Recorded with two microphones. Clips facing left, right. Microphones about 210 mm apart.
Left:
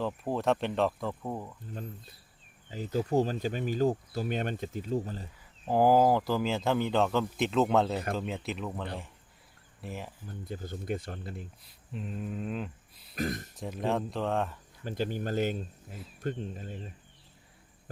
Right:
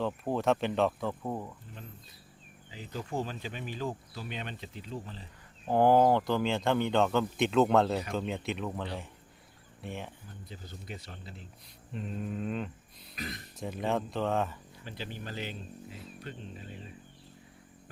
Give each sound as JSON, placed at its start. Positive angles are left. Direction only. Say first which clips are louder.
{"t": 0.0, "sound": "speech", "louder": "even", "side_deg": 0}
{"t": 2.6, "sound": "speech", "louder": "left 9 dB", "side_deg": 45}
{"t": 5.6, "sound": "speech", "louder": "even", "side_deg": 5}
{"t": 10.5, "sound": "speech", "louder": "left 10 dB", "side_deg": 50}
{"t": 11.9, "sound": "speech", "louder": "even", "side_deg": 0}
{"t": 13.1, "sound": "speech", "louder": "left 8 dB", "side_deg": 45}
{"t": 13.6, "sound": "speech", "louder": "even", "side_deg": 0}
{"t": 14.8, "sound": "speech", "louder": "left 9 dB", "side_deg": 45}